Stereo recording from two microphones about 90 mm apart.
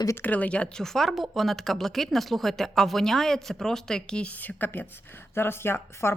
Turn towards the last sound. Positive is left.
turn(degrees=30)  # may be behind; listen again after turning